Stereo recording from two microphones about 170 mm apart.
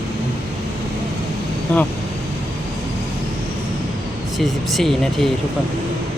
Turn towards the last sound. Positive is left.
turn(degrees=0)  # may be behind; listen again after turning